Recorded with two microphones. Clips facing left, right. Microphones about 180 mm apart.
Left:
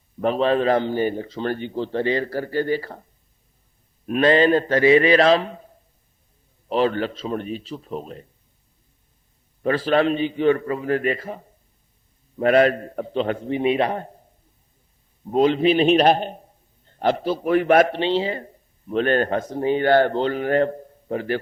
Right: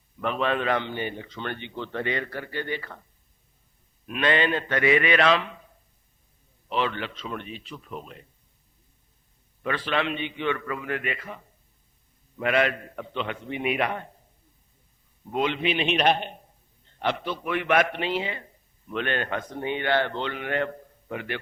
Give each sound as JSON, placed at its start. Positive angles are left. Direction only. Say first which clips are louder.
{"t": 0.2, "sound": "a man's voice", "louder": "left 7 dB", "side_deg": 35}
{"t": 9.6, "sound": "a man's voice", "louder": "left 8 dB", "side_deg": 40}
{"t": 15.3, "sound": "a man's voice", "louder": "left 9 dB", "side_deg": 35}